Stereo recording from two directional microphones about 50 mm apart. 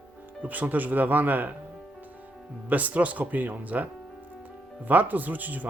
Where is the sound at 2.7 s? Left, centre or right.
Right.